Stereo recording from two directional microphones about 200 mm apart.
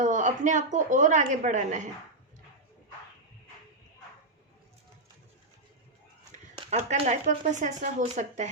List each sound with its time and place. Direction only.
0.0 s a woman's voice: 40° right (ahead or behind)
6.7 s a woman's voice: 30° right (ahead or behind)